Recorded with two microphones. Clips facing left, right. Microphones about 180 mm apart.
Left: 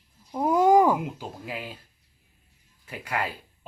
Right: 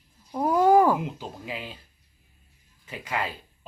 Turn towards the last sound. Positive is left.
turn(degrees=10)  # may be behind; listen again after turning